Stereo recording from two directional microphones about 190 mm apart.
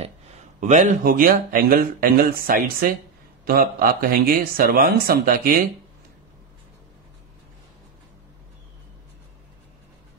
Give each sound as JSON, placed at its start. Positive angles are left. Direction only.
{"t": 0.6, "sound": "speech", "side_deg": -40}